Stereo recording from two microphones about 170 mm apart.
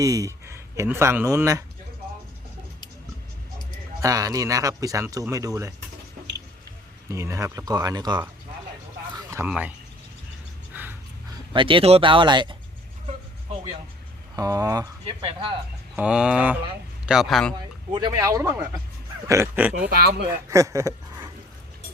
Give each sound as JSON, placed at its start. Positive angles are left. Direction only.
{"t": 0.0, "sound": "speech", "side_deg": -20}
{"t": 4.0, "sound": "speech", "side_deg": -20}
{"t": 7.1, "sound": "speech", "side_deg": -15}
{"t": 9.1, "sound": "a sound", "side_deg": -15}
{"t": 9.5, "sound": "speech", "side_deg": -10}
{"t": 10.7, "sound": "a sound", "side_deg": -10}
{"t": 11.5, "sound": "speech", "side_deg": -30}
{"t": 14.3, "sound": "speech", "side_deg": -20}
{"t": 16.0, "sound": "speech", "side_deg": -5}
{"t": 17.5, "sound": "speech", "side_deg": -25}
{"t": 20.0, "sound": "speech", "side_deg": -70}
{"t": 20.5, "sound": "speech", "side_deg": -20}